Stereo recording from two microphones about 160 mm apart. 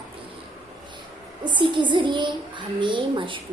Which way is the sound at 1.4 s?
30° right (ahead or behind).